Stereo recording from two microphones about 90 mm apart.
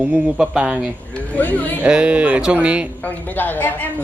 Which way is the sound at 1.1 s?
15° left (ahead or behind).